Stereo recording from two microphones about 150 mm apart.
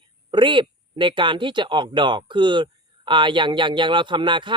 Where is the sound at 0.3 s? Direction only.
30° right (ahead or behind).